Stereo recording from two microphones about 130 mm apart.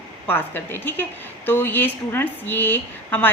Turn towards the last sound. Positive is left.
turn(degrees=15)  # may be behind; listen again after turning